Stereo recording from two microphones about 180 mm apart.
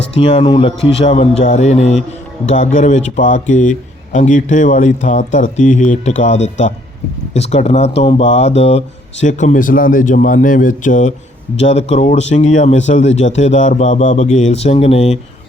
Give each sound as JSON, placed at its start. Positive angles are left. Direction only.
{"t": 0.1, "sound": "speech", "side_deg": 30}